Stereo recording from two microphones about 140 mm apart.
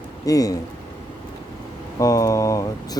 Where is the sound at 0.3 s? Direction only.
25° left (ahead or behind).